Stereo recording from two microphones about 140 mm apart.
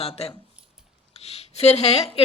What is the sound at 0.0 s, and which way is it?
A woman's voice, 45° left (ahead or behind).